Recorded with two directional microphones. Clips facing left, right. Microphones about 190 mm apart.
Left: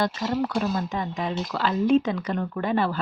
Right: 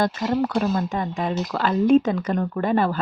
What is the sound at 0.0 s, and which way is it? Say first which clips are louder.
Speech: right 3 dB; 50° right (ahead or behind).